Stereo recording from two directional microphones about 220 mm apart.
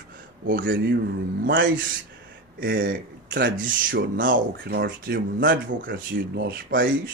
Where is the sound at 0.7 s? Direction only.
45° right (ahead or behind).